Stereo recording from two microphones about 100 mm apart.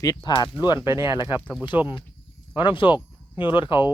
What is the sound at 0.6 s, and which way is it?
Speech, 50° left (ahead or behind).